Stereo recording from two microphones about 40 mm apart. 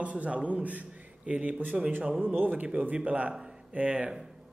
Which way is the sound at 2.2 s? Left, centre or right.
Right.